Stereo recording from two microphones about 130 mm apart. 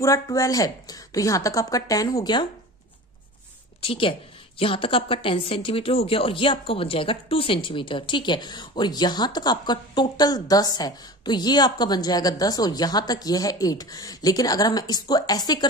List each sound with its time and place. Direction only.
0.0 s speech: 25° left (ahead or behind)
3.8 s a woman's voice: 45° left (ahead or behind)